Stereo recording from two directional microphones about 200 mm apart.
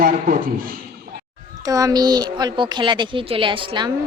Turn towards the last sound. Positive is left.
turn(degrees=-25)  # may be behind; listen again after turning